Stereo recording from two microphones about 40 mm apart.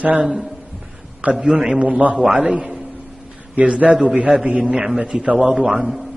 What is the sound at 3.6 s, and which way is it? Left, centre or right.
A man's voice, right.